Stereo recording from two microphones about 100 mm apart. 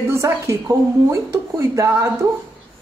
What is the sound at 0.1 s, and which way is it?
A woman's voice, 30° right (ahead or behind).